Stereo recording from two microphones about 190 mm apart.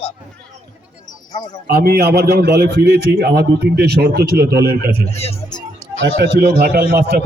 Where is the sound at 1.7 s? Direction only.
55° right (ahead or behind).